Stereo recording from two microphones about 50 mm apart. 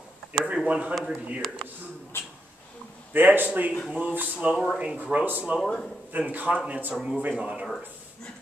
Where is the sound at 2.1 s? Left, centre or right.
Left.